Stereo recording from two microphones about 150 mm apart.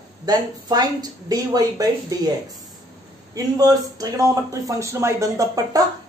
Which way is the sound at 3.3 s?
25° right (ahead or behind).